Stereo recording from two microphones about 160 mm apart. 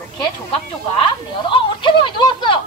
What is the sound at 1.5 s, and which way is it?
Speech, 30° left (ahead or behind).